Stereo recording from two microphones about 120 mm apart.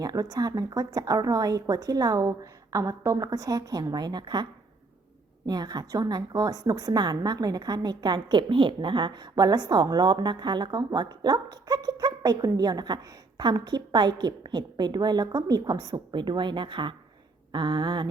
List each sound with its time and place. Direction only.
0.0 s a woman's voice: 30° right (ahead or behind)
5.5 s a woman's voice: 35° right (ahead or behind)